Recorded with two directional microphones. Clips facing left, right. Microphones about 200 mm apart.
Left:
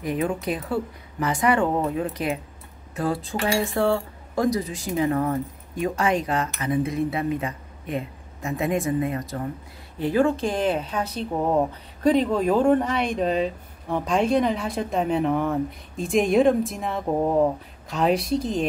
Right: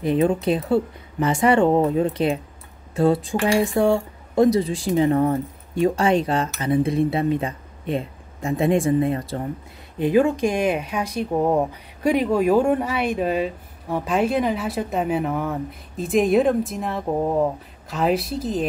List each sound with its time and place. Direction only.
0.0 s speech: 30° right (ahead or behind)
9.9 s speech: 15° right (ahead or behind)